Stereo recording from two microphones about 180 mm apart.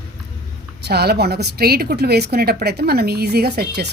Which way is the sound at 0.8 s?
65° right (ahead or behind).